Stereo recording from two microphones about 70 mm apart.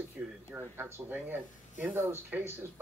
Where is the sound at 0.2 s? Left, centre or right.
Centre.